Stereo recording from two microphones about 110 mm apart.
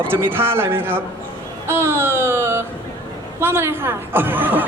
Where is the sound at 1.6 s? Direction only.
20° right (ahead or behind).